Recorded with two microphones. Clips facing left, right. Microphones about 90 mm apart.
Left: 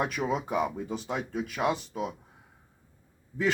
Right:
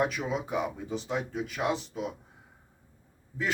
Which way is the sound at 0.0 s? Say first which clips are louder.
Even; 50° left (ahead or behind).